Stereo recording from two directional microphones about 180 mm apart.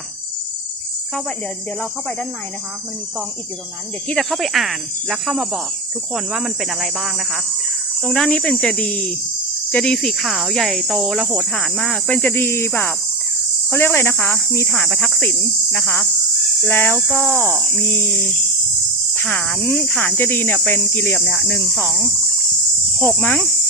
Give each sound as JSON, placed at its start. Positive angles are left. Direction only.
{"t": 4.1, "sound": "speech", "side_deg": 0}